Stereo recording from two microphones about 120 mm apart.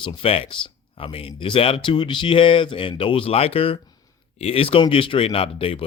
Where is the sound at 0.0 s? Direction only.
50° left (ahead or behind).